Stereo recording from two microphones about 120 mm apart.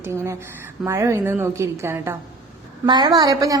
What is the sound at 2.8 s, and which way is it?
Speech, 40° right (ahead or behind).